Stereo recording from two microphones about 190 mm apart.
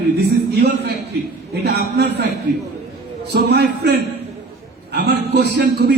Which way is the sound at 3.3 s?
60° right (ahead or behind).